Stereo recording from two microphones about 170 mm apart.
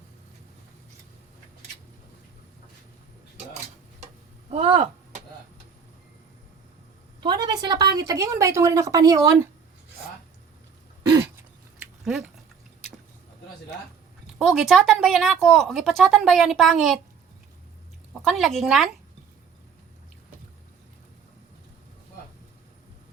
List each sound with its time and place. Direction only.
4.5 s a sound: 35° right (ahead or behind)
7.2 s speech: 25° right (ahead or behind)
14.3 s speech: centre (ahead or behind)
18.1 s speech: centre (ahead or behind)